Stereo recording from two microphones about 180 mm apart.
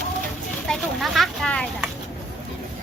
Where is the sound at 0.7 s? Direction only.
Centre (ahead or behind).